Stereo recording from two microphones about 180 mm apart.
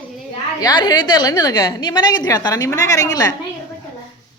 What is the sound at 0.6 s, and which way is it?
A woman's voice, 25° left (ahead or behind).